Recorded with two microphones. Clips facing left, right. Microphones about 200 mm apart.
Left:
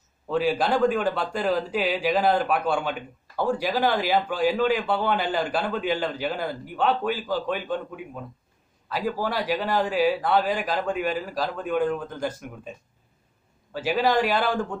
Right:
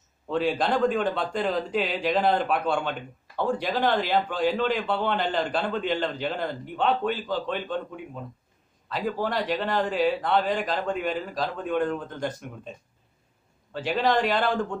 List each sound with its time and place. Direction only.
0.3 s a man's voice: 5° left (ahead or behind)
13.7 s a man's voice: 5° left (ahead or behind)